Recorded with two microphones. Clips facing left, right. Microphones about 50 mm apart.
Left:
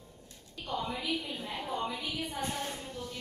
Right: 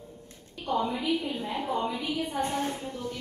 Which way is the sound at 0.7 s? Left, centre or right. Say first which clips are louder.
Right 6 dB; right.